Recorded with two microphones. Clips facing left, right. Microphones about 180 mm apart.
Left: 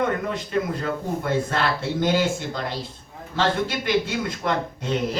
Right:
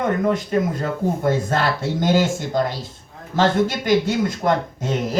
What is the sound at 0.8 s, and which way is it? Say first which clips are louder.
Speech: right 4 dB; 40° right (ahead or behind).